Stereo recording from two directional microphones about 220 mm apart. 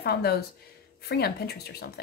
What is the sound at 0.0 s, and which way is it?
Speech, 45° left (ahead or behind).